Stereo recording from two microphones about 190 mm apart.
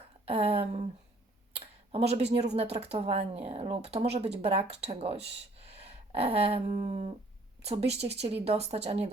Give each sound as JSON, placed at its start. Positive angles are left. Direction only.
{"t": 0.3, "sound": "speech", "side_deg": -30}
{"t": 5.6, "sound": "a sound", "side_deg": -35}
{"t": 6.8, "sound": "speech", "side_deg": -35}